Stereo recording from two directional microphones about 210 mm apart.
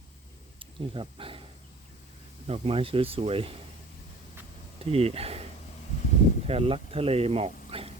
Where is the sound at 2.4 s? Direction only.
30° right (ahead or behind).